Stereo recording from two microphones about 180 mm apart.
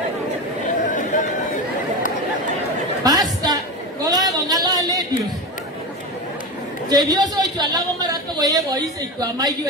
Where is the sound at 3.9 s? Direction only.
20° right (ahead or behind).